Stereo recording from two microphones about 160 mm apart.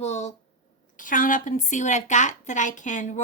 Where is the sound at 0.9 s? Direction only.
55° left (ahead or behind).